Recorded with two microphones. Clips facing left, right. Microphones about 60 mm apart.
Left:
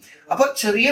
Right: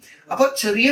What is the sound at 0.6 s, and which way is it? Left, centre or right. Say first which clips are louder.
Speech: even; centre.